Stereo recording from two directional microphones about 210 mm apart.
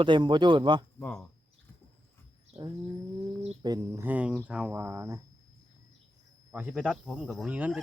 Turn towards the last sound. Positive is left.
turn(degrees=-5)  # may be behind; listen again after turning